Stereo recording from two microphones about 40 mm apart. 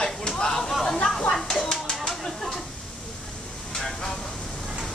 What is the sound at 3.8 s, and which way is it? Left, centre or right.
Vehicle, centre.